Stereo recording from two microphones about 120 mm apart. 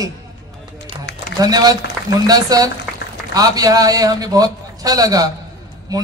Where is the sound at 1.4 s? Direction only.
30° right (ahead or behind).